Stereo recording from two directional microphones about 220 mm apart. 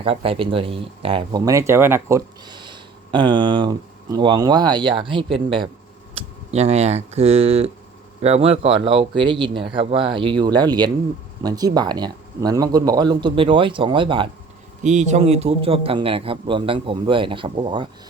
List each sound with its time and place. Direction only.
0.0 s speech: 25° right (ahead or behind)